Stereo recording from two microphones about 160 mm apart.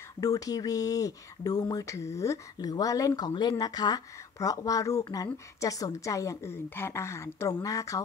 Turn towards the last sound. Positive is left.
turn(degrees=20)  # may be behind; listen again after turning